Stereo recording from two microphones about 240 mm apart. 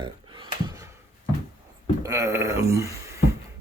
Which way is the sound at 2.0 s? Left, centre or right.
Centre.